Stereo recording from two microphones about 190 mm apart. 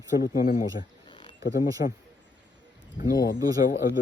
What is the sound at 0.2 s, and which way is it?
Speech, 50° left (ahead or behind).